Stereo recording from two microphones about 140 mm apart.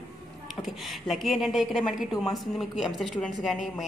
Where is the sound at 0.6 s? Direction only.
Centre (ahead or behind).